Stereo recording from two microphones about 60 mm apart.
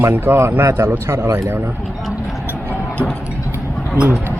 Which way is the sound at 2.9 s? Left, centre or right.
Left.